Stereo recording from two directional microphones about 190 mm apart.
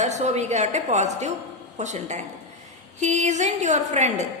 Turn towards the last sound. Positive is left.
turn(degrees=-35)  # may be behind; listen again after turning